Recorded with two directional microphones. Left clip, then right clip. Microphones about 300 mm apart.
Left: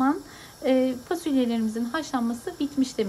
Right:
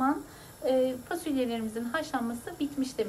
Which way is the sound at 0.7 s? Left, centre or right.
Centre.